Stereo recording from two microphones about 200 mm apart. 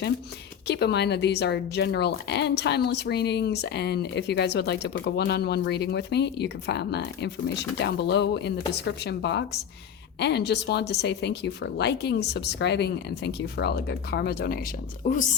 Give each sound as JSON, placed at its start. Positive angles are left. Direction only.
{"t": 0.7, "sound": "a woman's voice", "side_deg": 55}
{"t": 15.0, "sound": "speech", "side_deg": 40}